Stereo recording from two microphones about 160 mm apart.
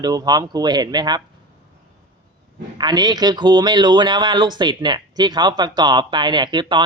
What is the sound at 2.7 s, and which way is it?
A man's voice, 25° right (ahead or behind).